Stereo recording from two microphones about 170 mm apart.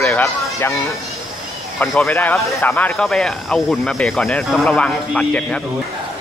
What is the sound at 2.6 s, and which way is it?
Speech, 15° left (ahead or behind).